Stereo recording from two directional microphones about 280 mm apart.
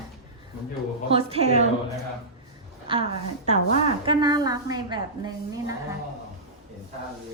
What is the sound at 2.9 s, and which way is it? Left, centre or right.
Speech, centre.